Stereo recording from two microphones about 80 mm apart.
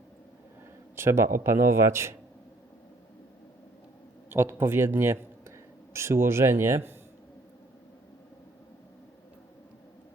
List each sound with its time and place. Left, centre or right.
0.9 s a man's voice: right
4.3 s speech: right